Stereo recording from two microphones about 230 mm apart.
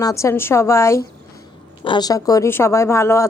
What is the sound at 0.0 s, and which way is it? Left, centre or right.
Speech, centre.